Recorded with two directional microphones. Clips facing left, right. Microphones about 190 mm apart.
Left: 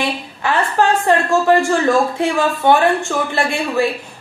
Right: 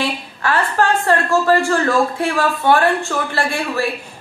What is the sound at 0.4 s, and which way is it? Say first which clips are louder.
A woman's voice: left 1 dB; 20° left (ahead or behind).